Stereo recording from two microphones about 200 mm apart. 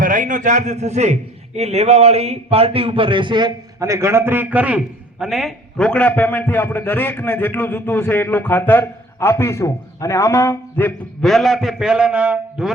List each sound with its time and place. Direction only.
0.0 s a man's voice: 40° right (ahead or behind); by 12.7 s 5° right (ahead or behind)